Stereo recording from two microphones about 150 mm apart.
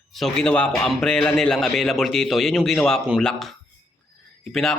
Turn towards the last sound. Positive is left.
turn(degrees=0)  # may be behind; listen again after turning